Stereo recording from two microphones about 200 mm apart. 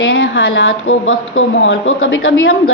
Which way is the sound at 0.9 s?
90° left.